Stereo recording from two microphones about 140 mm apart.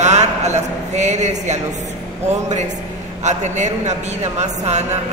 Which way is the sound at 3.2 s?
55° right (ahead or behind).